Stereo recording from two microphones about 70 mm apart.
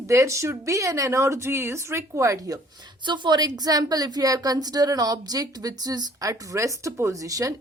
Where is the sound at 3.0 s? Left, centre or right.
Right.